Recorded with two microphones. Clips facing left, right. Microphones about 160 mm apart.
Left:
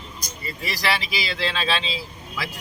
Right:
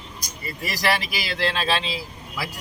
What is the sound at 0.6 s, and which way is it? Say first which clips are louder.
Speech: right 2 dB; 45° right (ahead or behind).